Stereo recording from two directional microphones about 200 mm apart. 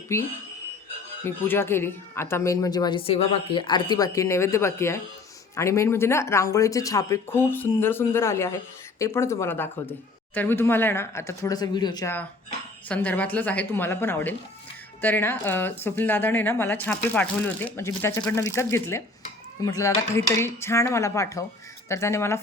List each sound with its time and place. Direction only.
0.1 s speech: 15° left (ahead or behind)